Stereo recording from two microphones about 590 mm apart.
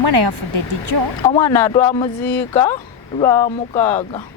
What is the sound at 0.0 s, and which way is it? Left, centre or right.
Speech, right.